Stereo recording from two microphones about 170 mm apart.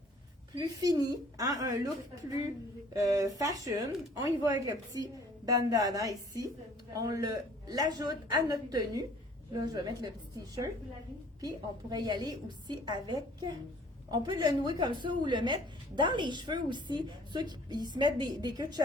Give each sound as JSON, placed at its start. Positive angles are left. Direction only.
{"t": 0.5, "sound": "a woman's voice", "side_deg": -20}
{"t": 2.9, "sound": "a woman's voice", "side_deg": -20}